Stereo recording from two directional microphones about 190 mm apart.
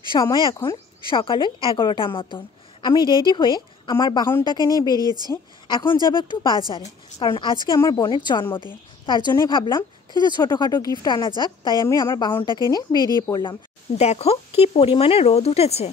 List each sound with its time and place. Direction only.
0.1 s a woman's voice: 20° left (ahead or behind)
5.0 s speech: 20° right (ahead or behind)
5.3 s a woman's voice: 20° left (ahead or behind)
12.9 s speech: 20° right (ahead or behind)
13.3 s speech: 25° left (ahead or behind)